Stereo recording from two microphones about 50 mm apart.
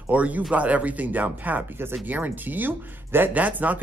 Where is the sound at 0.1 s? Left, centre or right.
Right.